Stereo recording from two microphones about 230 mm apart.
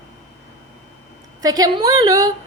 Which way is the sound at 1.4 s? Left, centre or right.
Centre.